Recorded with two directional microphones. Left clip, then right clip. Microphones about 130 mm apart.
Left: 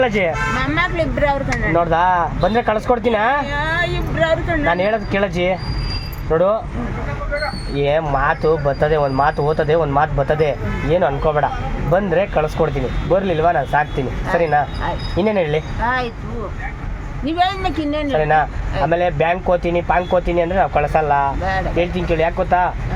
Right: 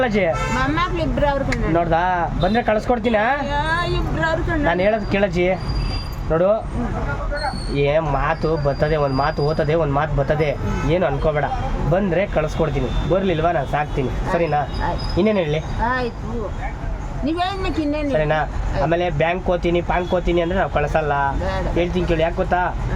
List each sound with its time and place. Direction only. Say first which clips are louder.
0.0 s speech: left 2 dB; 25° right (ahead or behind)
7.8 s speech: left 2 dB; 20° right (ahead or behind)
17.2 s speech: left 4 dB; 15° right (ahead or behind)